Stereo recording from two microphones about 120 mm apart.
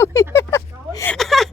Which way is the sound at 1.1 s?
Centre (ahead or behind).